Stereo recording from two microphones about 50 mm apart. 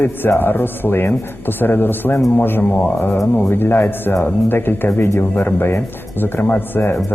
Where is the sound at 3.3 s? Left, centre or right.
Left.